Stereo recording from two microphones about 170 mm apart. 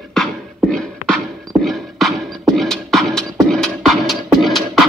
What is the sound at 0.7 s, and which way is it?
Music, 5° left (ahead or behind).